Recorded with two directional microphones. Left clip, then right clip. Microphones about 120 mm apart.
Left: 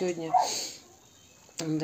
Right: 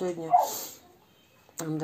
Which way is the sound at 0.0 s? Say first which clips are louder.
Right 2 dB; 5° left (ahead or behind).